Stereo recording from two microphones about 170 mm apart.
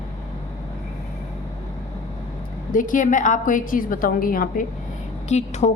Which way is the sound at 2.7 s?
50° left (ahead or behind).